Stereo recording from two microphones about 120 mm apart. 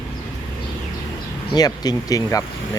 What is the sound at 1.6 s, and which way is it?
Speech, 35° left (ahead or behind).